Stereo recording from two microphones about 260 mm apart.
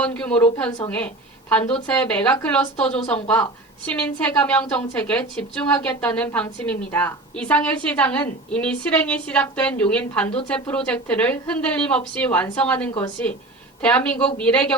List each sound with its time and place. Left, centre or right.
0.0 s a woman's voice: centre
4.3 s a woman's voice: centre